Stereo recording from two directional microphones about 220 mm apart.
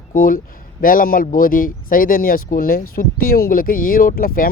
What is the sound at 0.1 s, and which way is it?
Speech, 40° left (ahead or behind).